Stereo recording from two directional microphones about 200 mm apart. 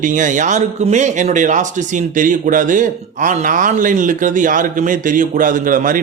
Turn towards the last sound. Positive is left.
turn(degrees=-45)  # may be behind; listen again after turning